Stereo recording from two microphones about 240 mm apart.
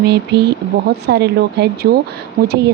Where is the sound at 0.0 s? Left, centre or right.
Right.